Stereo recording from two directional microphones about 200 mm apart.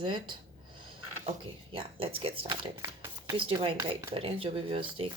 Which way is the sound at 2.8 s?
10° right (ahead or behind).